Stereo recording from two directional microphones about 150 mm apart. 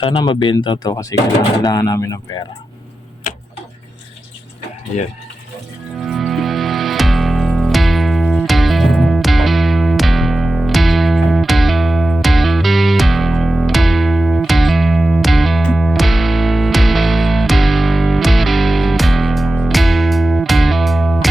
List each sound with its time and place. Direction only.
0.0 s speech: 35° left (ahead or behind)
6.0 s music: centre (ahead or behind)